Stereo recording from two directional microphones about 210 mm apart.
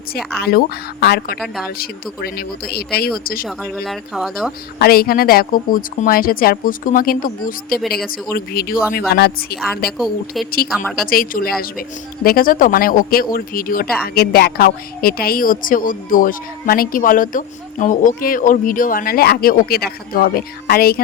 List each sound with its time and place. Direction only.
0.3 s a woman's voice: 50° left (ahead or behind)
3.6 s speech: centre (ahead or behind)
4.8 s a woman's voice: 45° left (ahead or behind)
7.8 s speech: centre (ahead or behind)
8.3 s a woman's voice: 45° left (ahead or behind)
11.0 s a woman's voice: 45° left (ahead or behind)